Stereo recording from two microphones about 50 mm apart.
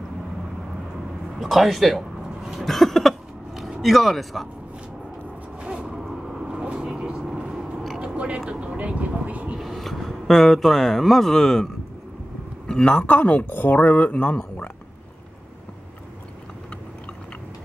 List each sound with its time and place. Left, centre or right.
1.4 s speech: centre
2.6 s a sound: centre
3.8 s speech: centre
5.6 s a sound: right
5.9 s vehicle: centre
6.6 s vehicle: right
8.0 s vehicle: right
8.5 s speech: right
9.6 s speech: centre
12.6 s a man's voice: centre
13.0 s speech: left